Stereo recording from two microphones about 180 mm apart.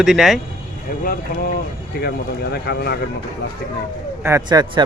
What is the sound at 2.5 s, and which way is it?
Speech, 60° left (ahead or behind).